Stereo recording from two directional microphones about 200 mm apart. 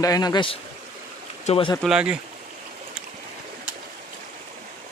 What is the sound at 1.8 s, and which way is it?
Speech, 5° right (ahead or behind).